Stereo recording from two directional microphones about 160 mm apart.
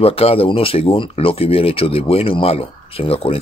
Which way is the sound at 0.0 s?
40° left (ahead or behind).